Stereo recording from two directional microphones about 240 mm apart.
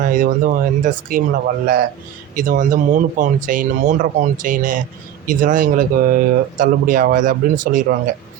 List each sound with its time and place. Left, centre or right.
0.0 s speech: right